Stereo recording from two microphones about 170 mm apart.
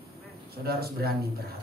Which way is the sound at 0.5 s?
65° right (ahead or behind).